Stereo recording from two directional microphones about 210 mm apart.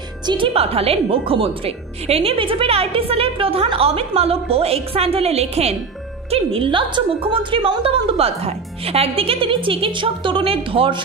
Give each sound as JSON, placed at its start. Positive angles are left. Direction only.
{"t": 0.3, "sound": "a woman's voice", "side_deg": -25}